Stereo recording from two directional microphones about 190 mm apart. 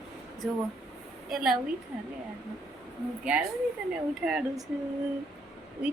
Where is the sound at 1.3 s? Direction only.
Centre (ahead or behind).